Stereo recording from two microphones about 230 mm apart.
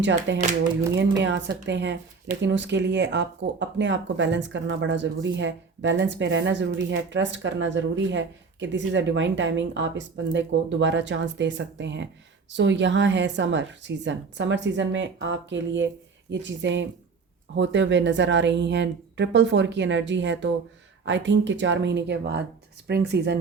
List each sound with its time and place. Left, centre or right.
0.0 s speech: right